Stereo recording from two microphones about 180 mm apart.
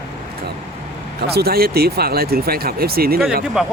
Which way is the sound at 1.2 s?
60° right (ahead or behind).